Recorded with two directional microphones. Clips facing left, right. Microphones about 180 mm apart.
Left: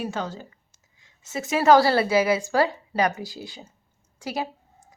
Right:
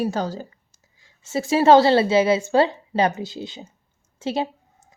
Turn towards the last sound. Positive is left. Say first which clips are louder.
# right 5 dB
turn(degrees=-25)  # may be behind; listen again after turning